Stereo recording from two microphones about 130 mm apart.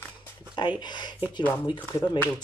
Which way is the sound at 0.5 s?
35° left (ahead or behind).